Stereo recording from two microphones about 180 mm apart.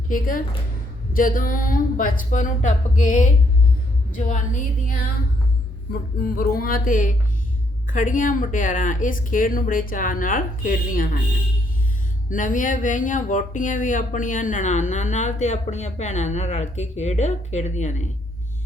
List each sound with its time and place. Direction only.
0.1 s speech: 50° left (ahead or behind)
5.9 s speech: 55° left (ahead or behind)
12.3 s speech: 45° left (ahead or behind)